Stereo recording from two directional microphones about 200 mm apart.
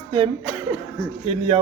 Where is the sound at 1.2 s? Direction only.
25° right (ahead or behind).